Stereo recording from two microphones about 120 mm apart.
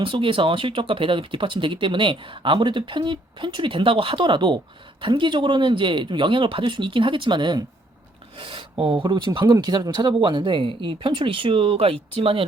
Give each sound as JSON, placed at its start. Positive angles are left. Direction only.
{"t": 0.0, "sound": "speech", "side_deg": -45}